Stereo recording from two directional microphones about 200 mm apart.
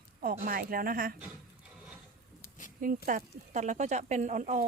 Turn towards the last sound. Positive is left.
turn(degrees=-40)  # may be behind; listen again after turning